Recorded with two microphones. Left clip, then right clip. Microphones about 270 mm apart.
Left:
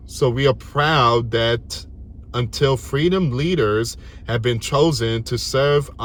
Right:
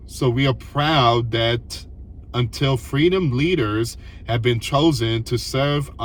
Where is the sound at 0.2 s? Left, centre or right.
Centre.